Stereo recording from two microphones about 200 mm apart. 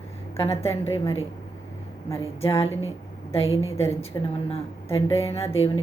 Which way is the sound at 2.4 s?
30° left (ahead or behind).